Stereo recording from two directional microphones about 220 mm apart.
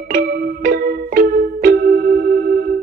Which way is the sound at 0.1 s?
45° right (ahead or behind).